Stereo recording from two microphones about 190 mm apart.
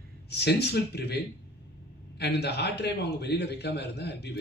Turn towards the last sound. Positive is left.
turn(degrees=60)  # may be behind; listen again after turning